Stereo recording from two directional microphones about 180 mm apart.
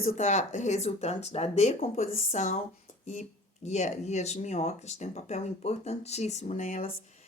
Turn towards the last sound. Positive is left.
turn(degrees=45)  # may be behind; listen again after turning